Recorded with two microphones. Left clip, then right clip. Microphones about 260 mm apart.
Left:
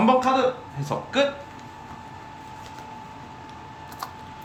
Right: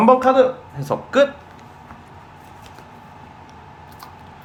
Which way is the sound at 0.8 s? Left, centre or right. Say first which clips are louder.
Right 7 dB; right.